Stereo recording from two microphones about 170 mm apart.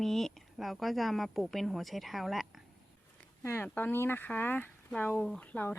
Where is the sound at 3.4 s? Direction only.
15° left (ahead or behind).